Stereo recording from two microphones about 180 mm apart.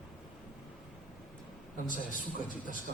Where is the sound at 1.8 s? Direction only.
45° left (ahead or behind).